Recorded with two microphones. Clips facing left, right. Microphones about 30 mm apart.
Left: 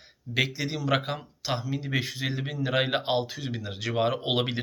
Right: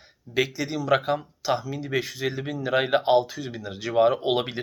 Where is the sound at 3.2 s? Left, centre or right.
Left.